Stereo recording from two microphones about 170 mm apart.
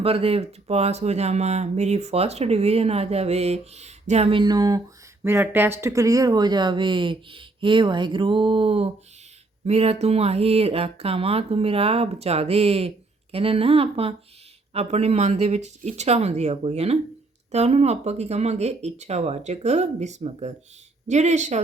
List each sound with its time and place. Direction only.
0.0 s speech: 35° right (ahead or behind)